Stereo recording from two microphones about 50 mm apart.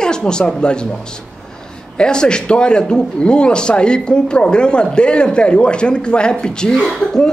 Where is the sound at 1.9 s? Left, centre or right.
Centre.